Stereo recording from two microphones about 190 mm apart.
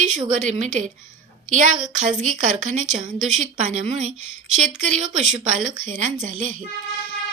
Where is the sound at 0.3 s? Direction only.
40° right (ahead or behind).